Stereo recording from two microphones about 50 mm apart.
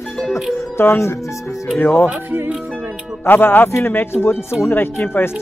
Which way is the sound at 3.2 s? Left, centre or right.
Left.